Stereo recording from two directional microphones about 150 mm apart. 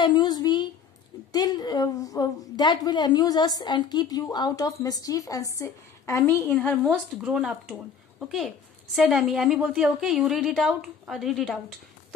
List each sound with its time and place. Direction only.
0.0 s a sound: 30° left (ahead or behind)
1.3 s a woman's voice: 25° left (ahead or behind)
6.5 s a woman's voice: 5° left (ahead or behind)
8.9 s a woman's voice: centre (ahead or behind)